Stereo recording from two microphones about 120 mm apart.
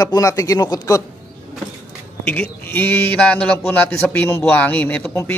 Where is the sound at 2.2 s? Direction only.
10° left (ahead or behind).